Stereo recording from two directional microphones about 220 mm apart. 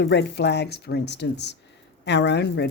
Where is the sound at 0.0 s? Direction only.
50° left (ahead or behind).